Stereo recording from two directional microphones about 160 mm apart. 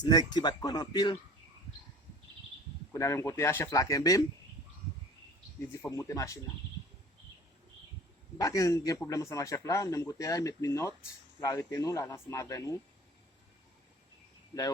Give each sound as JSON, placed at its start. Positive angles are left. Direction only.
{"t": 0.0, "sound": "a man's voice", "side_deg": 25}
{"t": 2.9, "sound": "a man's voice", "side_deg": 15}
{"t": 5.5, "sound": "a man's voice", "side_deg": 15}
{"t": 8.4, "sound": "a man's voice", "side_deg": 20}